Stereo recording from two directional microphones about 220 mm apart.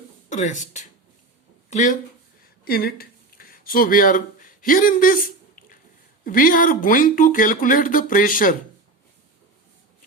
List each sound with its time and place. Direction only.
0.3 s speech: 35° left (ahead or behind)
6.2 s speech: 40° left (ahead or behind)